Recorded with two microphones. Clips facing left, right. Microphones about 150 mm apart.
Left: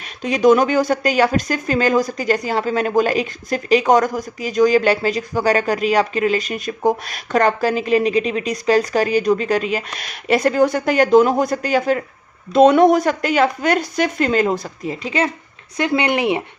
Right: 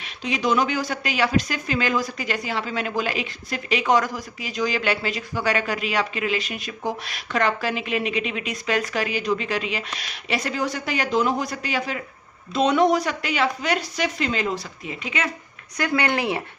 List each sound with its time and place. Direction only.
0.2 s speech: 45° left (ahead or behind)
15.0 s speech: 35° left (ahead or behind)
15.8 s speech: 20° left (ahead or behind)